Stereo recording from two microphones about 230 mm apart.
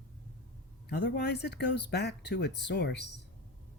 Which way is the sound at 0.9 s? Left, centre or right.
Left.